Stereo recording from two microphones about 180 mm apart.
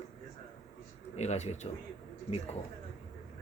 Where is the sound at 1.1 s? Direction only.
40° left (ahead or behind).